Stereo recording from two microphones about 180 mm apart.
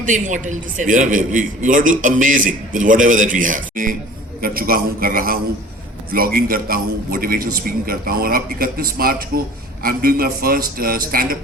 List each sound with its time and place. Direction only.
0.0 s a man's voice: 45° right (ahead or behind)